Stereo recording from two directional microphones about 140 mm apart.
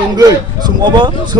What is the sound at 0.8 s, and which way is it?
Speech, 30° right (ahead or behind).